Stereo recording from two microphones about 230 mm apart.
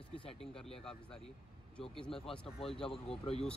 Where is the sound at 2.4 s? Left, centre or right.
Left.